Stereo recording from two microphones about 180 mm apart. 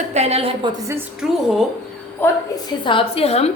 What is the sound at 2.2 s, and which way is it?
Speech, 10° left (ahead or behind).